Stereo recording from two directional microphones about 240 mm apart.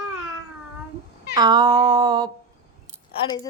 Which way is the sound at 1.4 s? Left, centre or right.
Centre.